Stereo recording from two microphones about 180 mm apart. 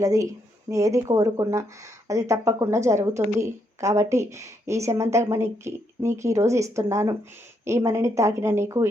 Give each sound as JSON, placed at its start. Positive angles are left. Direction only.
{"t": 0.0, "sound": "a woman's voice", "side_deg": -20}